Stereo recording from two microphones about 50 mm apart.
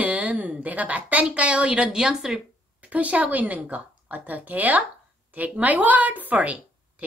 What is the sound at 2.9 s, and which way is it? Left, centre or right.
A woman's voice, right.